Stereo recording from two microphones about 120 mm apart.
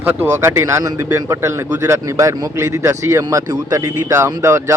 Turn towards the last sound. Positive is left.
turn(degrees=-25)  # may be behind; listen again after turning